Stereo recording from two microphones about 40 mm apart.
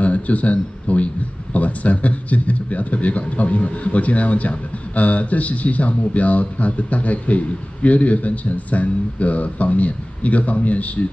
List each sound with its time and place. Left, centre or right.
0.0 s a man's voice: left